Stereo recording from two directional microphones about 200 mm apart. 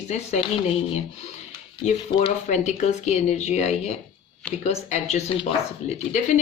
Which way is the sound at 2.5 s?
35° left (ahead or behind).